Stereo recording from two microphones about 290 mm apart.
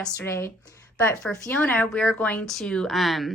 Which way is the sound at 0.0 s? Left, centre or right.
Centre.